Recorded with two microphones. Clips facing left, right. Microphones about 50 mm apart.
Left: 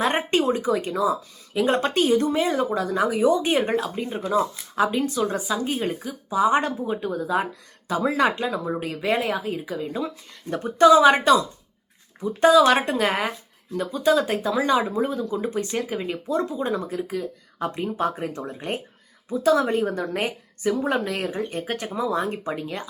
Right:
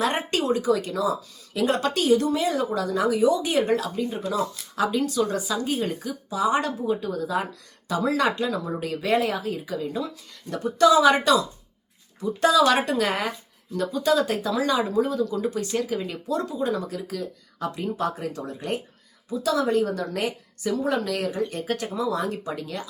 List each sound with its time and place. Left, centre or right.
0.0 s speech: left
10.5 s a woman's voice: left